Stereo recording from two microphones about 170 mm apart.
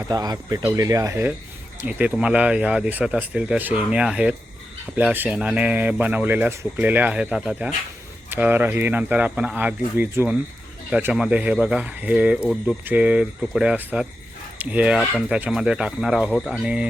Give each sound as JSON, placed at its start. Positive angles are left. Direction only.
{"t": 0.1, "sound": "speech", "side_deg": -20}